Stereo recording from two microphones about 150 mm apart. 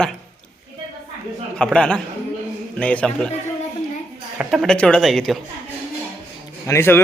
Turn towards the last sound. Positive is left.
turn(degrees=15)  # may be behind; listen again after turning